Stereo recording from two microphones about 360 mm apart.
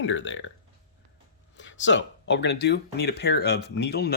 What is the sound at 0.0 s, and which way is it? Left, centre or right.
Speech, left.